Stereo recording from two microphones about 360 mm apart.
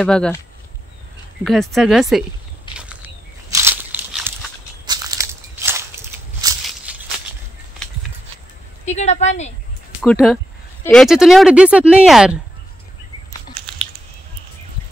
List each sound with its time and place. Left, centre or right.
0.0 s speech: centre
1.4 s speech: centre
3.4 s a sound: centre
8.8 s a woman's voice: centre
10.0 s speech: centre